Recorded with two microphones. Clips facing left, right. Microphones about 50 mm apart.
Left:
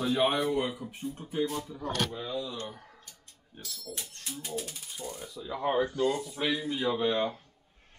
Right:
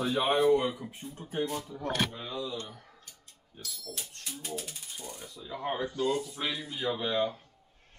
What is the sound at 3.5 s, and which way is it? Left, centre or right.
Speech, left.